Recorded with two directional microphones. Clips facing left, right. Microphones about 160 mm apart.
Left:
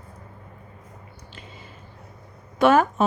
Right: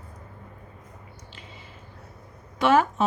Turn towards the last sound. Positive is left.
turn(degrees=50)  # may be behind; listen again after turning